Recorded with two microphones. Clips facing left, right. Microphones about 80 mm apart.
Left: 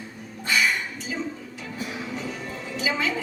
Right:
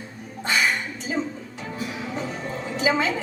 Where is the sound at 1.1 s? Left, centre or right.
Right.